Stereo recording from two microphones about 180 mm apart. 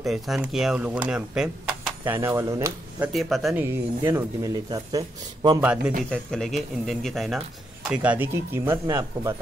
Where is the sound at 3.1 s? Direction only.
Centre (ahead or behind).